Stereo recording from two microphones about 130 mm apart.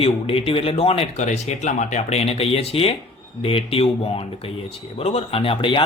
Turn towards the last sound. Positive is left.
turn(degrees=40)  # may be behind; listen again after turning